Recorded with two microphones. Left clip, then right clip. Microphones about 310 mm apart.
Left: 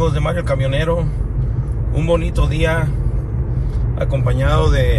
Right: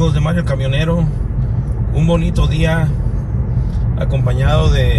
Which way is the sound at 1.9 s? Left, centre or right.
Left.